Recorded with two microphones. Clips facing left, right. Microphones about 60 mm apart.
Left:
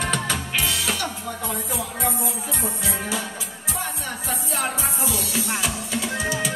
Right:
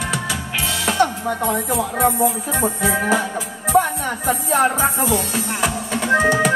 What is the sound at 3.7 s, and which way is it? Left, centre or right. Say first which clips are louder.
Music: right 14 dB; right.